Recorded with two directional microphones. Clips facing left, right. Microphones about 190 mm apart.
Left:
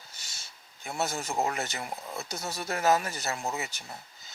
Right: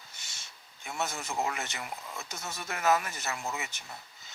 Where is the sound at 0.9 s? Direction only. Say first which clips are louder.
Left 3 dB; 40° left (ahead or behind).